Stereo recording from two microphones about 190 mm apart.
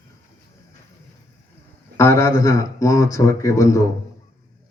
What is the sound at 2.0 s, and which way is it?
Speech, 15° left (ahead or behind).